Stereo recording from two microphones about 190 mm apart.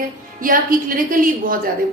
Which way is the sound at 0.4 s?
45° right (ahead or behind).